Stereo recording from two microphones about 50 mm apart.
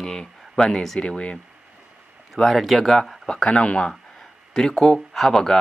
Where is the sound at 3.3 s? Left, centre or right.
Centre.